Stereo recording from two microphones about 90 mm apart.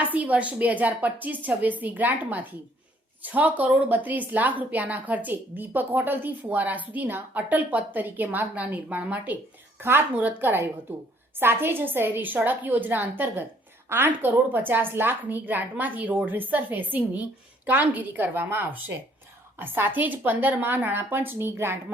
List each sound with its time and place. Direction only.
0.0 s a woman's voice: 15° right (ahead or behind)